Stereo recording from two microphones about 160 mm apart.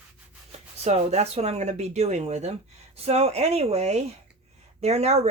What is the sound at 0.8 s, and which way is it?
Speech, 40° right (ahead or behind).